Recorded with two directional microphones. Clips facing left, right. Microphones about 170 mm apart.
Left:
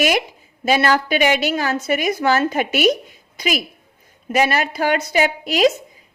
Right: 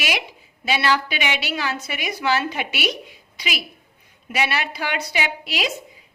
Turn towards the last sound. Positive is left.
turn(degrees=45)  # may be behind; listen again after turning